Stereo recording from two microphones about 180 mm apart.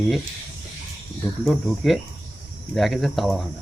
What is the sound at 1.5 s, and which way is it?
Speech, centre (ahead or behind).